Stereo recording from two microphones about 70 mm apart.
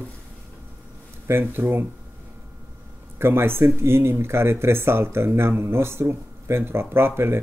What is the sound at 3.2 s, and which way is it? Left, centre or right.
Speech, right.